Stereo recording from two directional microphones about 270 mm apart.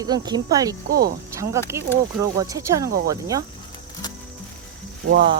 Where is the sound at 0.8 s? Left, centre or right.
Right.